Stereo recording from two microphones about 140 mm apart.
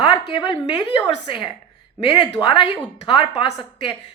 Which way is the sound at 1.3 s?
35° left (ahead or behind).